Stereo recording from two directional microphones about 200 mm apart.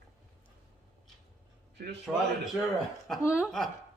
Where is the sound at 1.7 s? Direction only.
55° right (ahead or behind).